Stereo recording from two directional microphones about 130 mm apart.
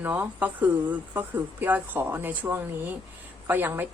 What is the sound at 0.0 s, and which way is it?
A woman's voice, 15° right (ahead or behind).